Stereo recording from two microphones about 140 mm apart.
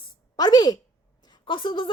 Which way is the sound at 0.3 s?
30° left (ahead or behind).